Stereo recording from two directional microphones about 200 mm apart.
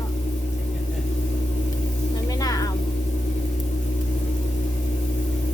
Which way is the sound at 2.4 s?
15° left (ahead or behind).